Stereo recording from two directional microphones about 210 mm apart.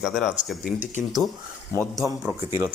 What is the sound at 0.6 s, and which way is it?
Speech, 40° left (ahead or behind).